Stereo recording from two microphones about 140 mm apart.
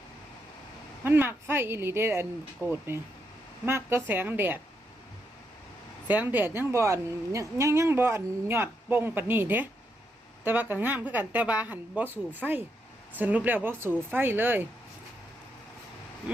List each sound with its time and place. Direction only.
1.0 s a woman's voice: 15° right (ahead or behind)
6.1 s a woman's voice: 10° right (ahead or behind)